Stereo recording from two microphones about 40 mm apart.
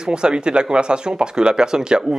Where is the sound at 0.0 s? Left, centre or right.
Right.